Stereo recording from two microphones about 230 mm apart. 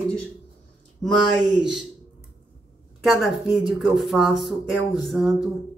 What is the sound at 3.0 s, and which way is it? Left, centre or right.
Speech, centre.